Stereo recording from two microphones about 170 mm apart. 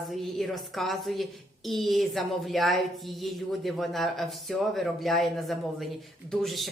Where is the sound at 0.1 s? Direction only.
Centre (ahead or behind).